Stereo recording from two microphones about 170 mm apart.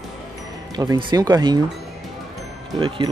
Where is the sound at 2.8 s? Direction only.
30° right (ahead or behind).